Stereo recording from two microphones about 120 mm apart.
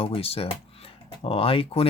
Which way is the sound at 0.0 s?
55° left (ahead or behind).